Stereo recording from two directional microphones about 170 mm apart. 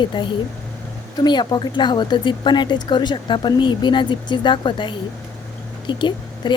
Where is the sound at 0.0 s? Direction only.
30° left (ahead or behind).